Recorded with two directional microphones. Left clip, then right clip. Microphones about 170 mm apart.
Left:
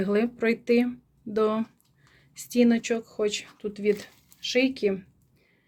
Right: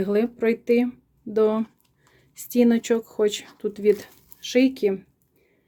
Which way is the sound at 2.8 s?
30° right (ahead or behind).